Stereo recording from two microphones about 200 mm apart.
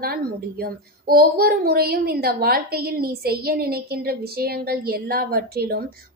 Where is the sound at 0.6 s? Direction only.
50° right (ahead or behind).